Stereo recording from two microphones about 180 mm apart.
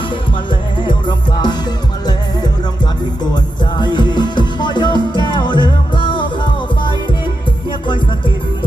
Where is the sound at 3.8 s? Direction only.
25° left (ahead or behind).